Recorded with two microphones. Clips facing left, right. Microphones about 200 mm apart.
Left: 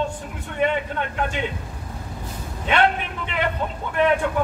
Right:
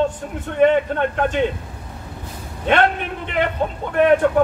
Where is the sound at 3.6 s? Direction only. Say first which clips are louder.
Right 5 dB; 50° right (ahead or behind).